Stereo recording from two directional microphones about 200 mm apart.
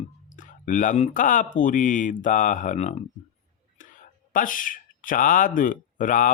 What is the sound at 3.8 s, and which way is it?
Whispering, 40° left (ahead or behind).